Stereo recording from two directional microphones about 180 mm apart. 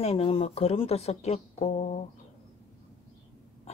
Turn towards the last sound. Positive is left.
turn(degrees=35)  # may be behind; listen again after turning